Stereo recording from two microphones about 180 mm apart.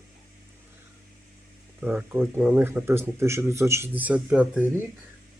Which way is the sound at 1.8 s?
10° right (ahead or behind).